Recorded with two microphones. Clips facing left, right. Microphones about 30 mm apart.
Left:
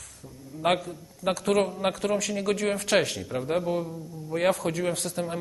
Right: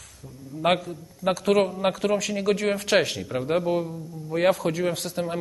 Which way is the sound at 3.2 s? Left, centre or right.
Centre.